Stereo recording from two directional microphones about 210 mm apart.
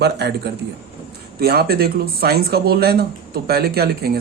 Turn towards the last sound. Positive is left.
turn(degrees=-50)  # may be behind; listen again after turning